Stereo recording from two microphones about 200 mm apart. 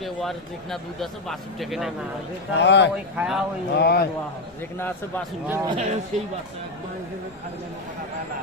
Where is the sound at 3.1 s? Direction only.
5° right (ahead or behind).